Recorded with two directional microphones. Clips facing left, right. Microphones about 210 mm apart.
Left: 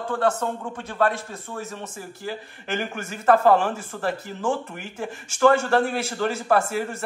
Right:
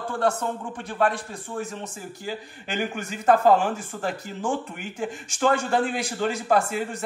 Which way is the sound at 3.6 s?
15° right (ahead or behind).